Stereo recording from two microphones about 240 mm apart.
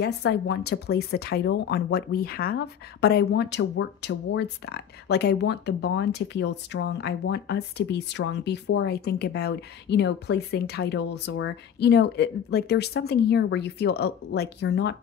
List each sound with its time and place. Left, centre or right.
0.0 s speech: left